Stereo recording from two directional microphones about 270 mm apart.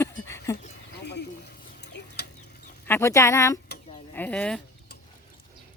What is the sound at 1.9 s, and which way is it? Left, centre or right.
Chicken, left.